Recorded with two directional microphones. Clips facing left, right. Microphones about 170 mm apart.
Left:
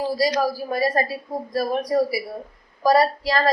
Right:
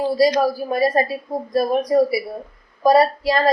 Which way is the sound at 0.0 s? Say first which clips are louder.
Right 5 dB; 25° right (ahead or behind).